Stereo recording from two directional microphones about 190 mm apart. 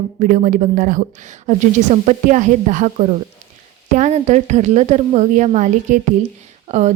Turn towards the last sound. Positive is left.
turn(degrees=-35)  # may be behind; listen again after turning